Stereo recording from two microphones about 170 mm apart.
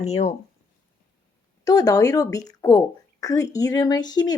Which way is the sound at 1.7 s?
20° left (ahead or behind).